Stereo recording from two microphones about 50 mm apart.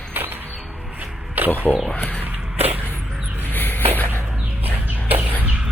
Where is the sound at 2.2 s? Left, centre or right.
Right.